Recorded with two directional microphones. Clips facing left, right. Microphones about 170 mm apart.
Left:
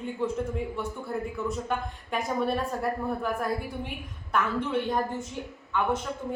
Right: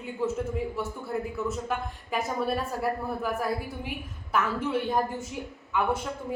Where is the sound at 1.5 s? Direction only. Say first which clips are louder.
Even; centre (ahead or behind).